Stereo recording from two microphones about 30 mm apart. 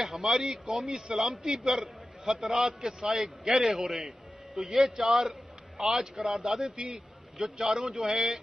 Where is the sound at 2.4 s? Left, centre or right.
Centre.